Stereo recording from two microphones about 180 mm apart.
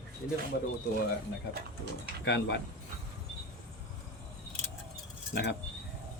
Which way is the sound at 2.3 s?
70° left (ahead or behind).